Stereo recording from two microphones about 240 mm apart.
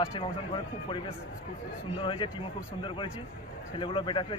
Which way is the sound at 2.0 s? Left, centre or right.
Left.